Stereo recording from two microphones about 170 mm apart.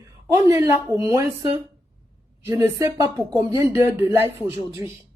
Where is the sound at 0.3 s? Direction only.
20° right (ahead or behind).